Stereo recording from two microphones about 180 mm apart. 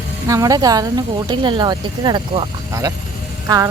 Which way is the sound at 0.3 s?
20° right (ahead or behind).